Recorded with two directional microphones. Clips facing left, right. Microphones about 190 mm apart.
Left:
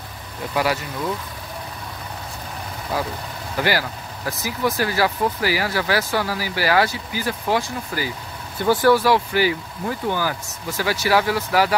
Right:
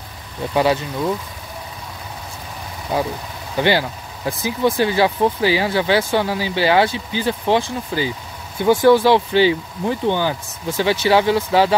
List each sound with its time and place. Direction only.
0.6 s speech: 25° right (ahead or behind)
2.9 s speech: 25° right (ahead or behind)